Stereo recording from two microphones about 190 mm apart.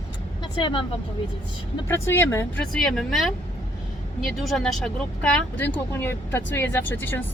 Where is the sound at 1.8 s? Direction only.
10° left (ahead or behind).